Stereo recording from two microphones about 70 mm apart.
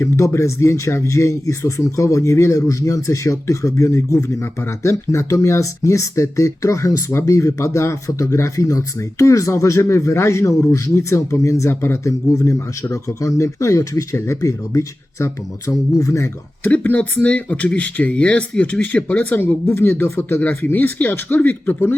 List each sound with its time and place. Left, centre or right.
0.0 s speech: left
16.6 s speech: left